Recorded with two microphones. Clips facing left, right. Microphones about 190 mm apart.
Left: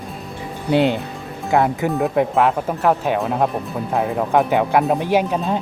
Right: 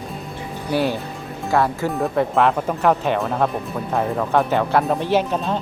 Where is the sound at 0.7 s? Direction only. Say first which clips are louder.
Left 4 dB; 20° left (ahead or behind).